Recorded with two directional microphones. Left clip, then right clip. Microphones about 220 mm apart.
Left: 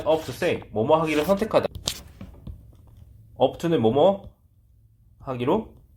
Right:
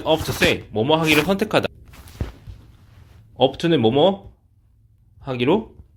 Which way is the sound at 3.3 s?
45° right (ahead or behind).